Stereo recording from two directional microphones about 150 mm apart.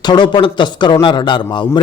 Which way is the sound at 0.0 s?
30° left (ahead or behind).